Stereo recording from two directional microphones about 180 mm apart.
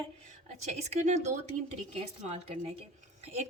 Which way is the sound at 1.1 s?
40° right (ahead or behind).